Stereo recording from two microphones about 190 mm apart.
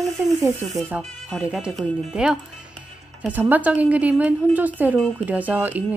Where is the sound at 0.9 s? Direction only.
5° right (ahead or behind).